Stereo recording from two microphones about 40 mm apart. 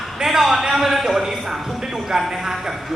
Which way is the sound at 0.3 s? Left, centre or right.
Centre.